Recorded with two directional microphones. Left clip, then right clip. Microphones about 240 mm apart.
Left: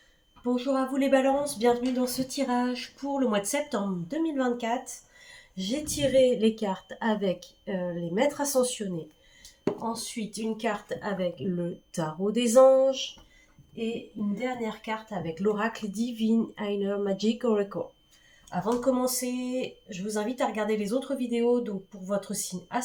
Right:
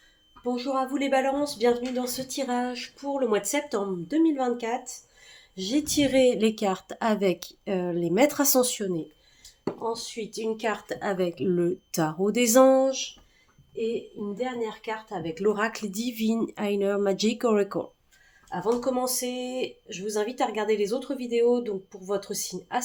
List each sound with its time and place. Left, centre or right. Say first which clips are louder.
0.4 s a woman's voice: even; right
9.8 s a woman's voice: right 3 dB; right
14.6 s a woman's voice: right 2 dB; right
15.4 s a woman's voice: right 3 dB; right
18.6 s speech: right 1 dB; right